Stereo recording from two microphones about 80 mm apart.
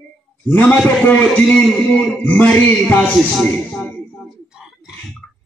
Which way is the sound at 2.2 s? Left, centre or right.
Left.